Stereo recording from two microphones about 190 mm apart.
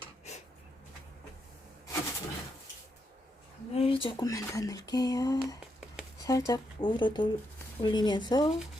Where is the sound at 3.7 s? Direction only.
30° left (ahead or behind).